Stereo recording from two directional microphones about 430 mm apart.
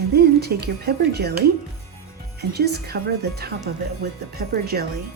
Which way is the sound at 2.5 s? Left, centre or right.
Right.